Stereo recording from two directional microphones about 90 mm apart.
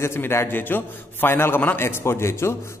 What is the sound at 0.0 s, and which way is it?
A man's voice, 30° left (ahead or behind).